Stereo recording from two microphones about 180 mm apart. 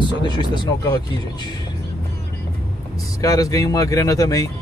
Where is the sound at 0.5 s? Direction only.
25° left (ahead or behind).